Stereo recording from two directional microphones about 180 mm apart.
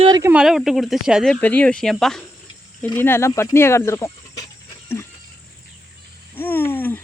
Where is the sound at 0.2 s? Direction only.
10° right (ahead or behind); by 4.4 s 15° left (ahead or behind).